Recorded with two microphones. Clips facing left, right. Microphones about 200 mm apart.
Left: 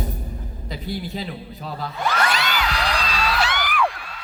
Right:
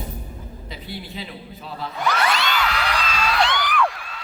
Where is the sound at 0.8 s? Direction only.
40° left (ahead or behind).